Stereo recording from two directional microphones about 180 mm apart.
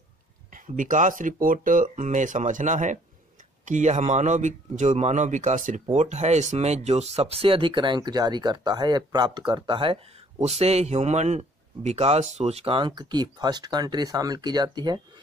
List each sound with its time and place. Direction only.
0.5 s a man's voice: 45° right (ahead or behind); by 15.0 s 25° right (ahead or behind)